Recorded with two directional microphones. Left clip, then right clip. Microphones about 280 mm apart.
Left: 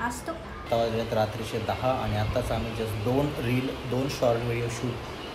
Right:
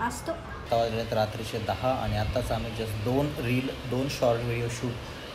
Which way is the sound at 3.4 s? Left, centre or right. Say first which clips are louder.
Left 1 dB; centre.